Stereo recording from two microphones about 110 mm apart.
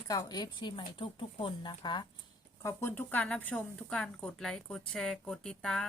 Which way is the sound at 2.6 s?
25° left (ahead or behind).